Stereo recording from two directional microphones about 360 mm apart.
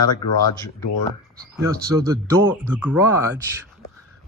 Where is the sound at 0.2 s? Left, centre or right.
Centre.